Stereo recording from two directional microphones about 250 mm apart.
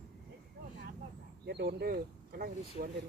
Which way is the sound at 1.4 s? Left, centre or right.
Right.